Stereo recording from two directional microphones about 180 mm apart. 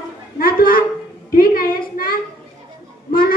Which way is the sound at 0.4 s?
55° left (ahead or behind).